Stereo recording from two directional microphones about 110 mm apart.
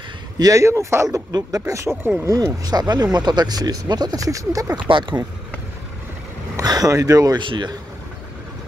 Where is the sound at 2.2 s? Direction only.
30° right (ahead or behind).